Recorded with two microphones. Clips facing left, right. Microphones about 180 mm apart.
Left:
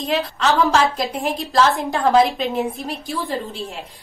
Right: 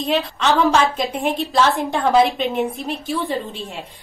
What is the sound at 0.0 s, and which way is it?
A woman's voice, centre (ahead or behind).